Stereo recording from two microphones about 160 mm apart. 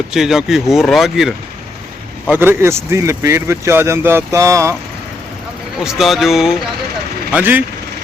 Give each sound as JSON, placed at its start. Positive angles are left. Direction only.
{"t": 0.1, "sound": "speech", "side_deg": -5}
{"t": 2.3, "sound": "speech", "side_deg": -15}
{"t": 5.8, "sound": "speech", "side_deg": 0}